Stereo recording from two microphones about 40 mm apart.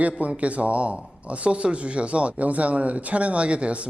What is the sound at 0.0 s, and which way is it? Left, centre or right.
Speech, right.